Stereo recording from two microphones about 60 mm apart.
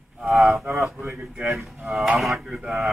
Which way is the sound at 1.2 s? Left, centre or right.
Centre.